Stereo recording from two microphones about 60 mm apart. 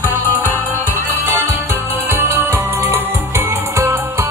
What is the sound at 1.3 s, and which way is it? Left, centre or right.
Music, right.